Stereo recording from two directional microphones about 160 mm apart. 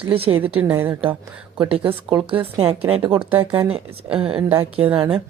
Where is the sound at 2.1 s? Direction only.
35° right (ahead or behind).